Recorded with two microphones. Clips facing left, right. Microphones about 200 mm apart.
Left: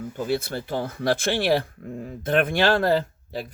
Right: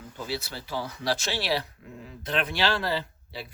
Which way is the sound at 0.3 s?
50° left (ahead or behind).